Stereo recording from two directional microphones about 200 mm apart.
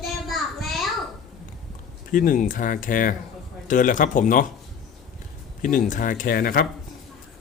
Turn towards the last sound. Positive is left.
turn(degrees=45)  # may be behind; listen again after turning